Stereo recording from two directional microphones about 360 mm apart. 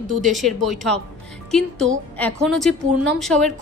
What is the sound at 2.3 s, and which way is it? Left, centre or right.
A woman's voice, centre.